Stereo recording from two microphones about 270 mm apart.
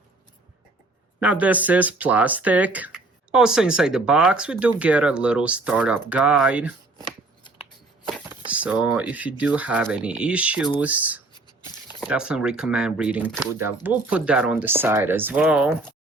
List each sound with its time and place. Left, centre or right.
1.2 s speech: centre
8.4 s speech: centre
11.3 s a sound: centre
12.0 s speech: centre